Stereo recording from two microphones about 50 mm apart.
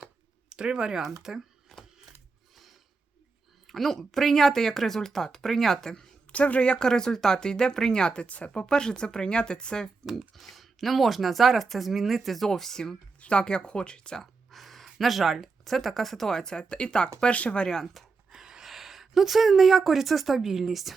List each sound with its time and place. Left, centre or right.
0.5 s speech: centre
3.7 s speech: centre
6.3 s speech: left
10.3 s speech: centre
13.1 s speech: left
14.5 s speech: centre